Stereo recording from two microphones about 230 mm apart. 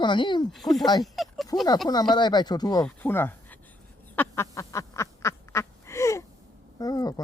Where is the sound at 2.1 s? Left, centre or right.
Centre.